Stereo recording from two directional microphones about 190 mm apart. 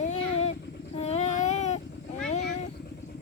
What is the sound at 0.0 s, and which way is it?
Vehicle, 35° left (ahead or behind).